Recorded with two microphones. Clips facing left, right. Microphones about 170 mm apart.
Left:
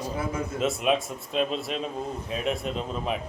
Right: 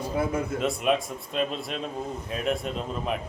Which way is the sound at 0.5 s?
Centre (ahead or behind).